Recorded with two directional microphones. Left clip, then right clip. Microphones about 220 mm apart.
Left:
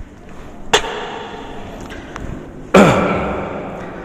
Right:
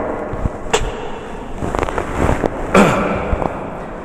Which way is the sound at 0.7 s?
25° left (ahead or behind).